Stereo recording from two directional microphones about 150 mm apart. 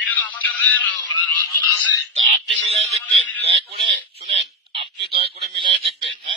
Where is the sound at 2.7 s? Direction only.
45° right (ahead or behind).